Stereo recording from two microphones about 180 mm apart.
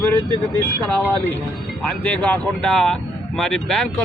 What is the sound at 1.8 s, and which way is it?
Speech, 5° left (ahead or behind).